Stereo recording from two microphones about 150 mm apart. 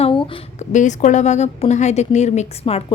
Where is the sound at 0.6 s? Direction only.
55° left (ahead or behind).